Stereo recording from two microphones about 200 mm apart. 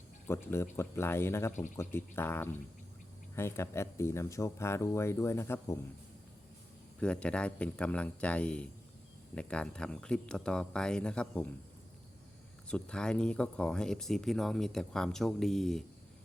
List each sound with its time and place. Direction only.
0.3 s speech: 15° left (ahead or behind)
7.0 s speech: 5° left (ahead or behind)
12.6 s speech: 5° left (ahead or behind)